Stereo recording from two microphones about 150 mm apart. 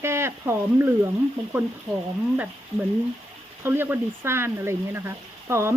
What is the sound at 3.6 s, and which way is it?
Speech, 15° right (ahead or behind).